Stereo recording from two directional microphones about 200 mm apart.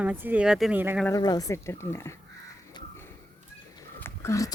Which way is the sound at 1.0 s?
15° left (ahead or behind).